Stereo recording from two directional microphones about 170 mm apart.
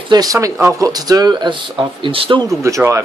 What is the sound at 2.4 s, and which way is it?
Speech, 20° right (ahead or behind).